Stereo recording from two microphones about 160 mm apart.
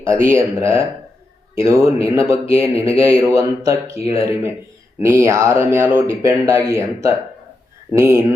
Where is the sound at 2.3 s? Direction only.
20° right (ahead or behind).